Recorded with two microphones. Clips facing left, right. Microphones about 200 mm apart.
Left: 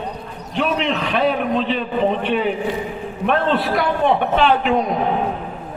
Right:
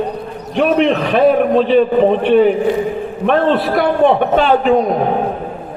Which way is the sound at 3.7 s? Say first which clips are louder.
Right 6 dB; 50° right (ahead or behind).